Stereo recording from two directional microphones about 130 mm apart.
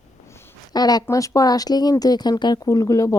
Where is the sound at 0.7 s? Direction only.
30° left (ahead or behind).